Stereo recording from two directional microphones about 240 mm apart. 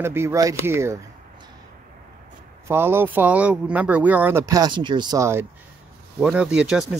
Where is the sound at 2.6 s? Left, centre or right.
Centre.